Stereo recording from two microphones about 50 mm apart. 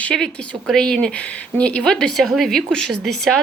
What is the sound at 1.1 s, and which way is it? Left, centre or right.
Speech, left.